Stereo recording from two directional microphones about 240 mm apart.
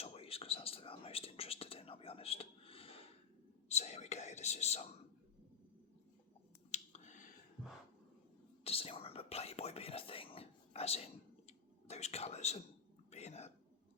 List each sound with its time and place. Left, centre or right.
0.0 s whispering: left
6.7 s finger snapping: left
8.6 s whispering: left
13.1 s a sound: left